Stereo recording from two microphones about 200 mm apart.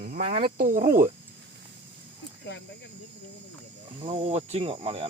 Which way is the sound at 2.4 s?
60° left (ahead or behind).